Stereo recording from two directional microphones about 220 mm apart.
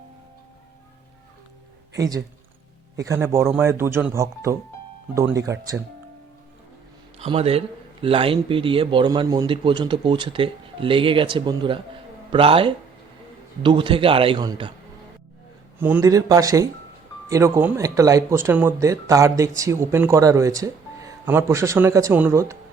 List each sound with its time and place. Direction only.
2.0 s a man's voice: 15° right (ahead or behind)
7.2 s a man's voice: 25° right (ahead or behind)
15.8 s a man's voice: 10° right (ahead or behind)